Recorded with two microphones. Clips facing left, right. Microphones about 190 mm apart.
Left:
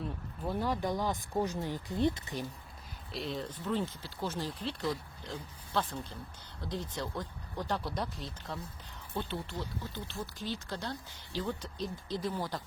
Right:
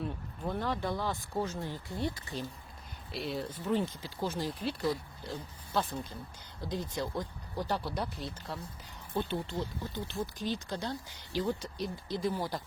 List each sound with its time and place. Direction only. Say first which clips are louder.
0.4 s speech: left 1 dB; 10° left (ahead or behind)
3.1 s speech: right 1 dB; 5° right (ahead or behind)
9.1 s speech: right 4 dB; 20° right (ahead or behind)